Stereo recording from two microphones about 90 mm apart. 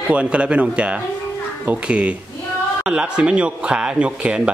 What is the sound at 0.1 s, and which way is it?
A man's voice, 15° right (ahead or behind).